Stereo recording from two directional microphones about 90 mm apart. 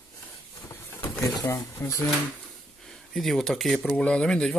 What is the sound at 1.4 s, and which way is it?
Speech, 35° left (ahead or behind).